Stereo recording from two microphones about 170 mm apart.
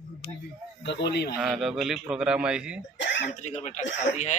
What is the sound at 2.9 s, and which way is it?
Throat clearing, 90° left.